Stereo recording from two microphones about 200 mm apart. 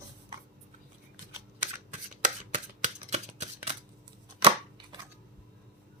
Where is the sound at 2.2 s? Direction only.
40° right (ahead or behind).